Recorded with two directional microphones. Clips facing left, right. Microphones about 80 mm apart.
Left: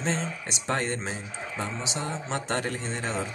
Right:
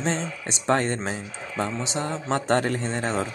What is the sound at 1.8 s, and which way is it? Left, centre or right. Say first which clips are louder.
Speech: right 5 dB; right.